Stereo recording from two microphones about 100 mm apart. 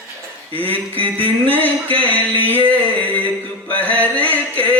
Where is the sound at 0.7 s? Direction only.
15° left (ahead or behind).